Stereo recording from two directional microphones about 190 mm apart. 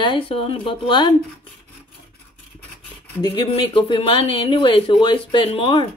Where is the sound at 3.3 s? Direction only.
25° left (ahead or behind).